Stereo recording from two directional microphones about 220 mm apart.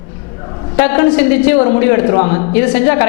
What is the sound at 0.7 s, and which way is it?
A woman's voice, 10° left (ahead or behind).